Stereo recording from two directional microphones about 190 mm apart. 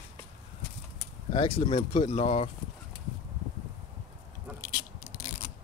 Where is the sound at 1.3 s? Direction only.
25° left (ahead or behind).